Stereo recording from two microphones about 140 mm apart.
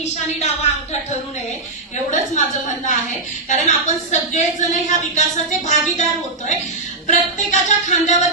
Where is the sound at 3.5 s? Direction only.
60° left (ahead or behind).